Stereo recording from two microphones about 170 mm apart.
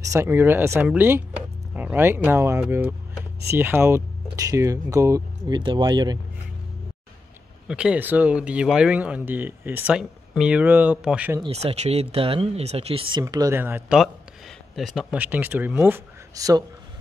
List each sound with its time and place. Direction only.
0.1 s speech: 15° right (ahead or behind)
7.6 s speech: 5° right (ahead or behind)
11.4 s speech: 40° right (ahead or behind)
13.2 s speech: 20° right (ahead or behind)